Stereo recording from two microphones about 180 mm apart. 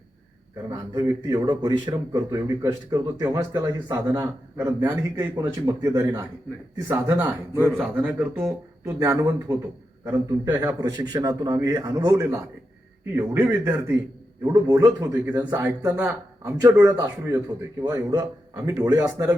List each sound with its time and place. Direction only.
0.7 s a man's voice: 20° right (ahead or behind)
10.8 s a man's voice: 25° right (ahead or behind)